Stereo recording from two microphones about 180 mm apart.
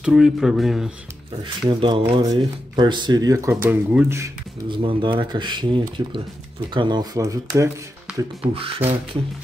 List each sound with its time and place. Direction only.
0.0 s speech: centre (ahead or behind)
1.4 s speech: 25° right (ahead or behind); by 4.3 s 10° right (ahead or behind)
4.6 s speech: 25° right (ahead or behind)
8.5 s speech: 30° right (ahead or behind)